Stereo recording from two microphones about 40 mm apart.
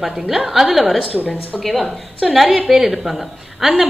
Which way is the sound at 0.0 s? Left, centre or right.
Centre.